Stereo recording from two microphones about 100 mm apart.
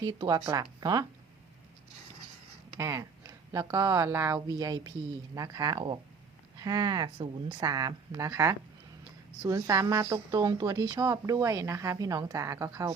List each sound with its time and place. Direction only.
0.0 s speech: 45° right (ahead or behind)
0.3 s a woman's voice: 35° right (ahead or behind)
2.7 s a woman's voice: 30° right (ahead or behind)